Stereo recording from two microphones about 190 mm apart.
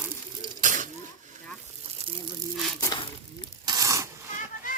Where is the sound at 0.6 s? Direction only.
45° right (ahead or behind).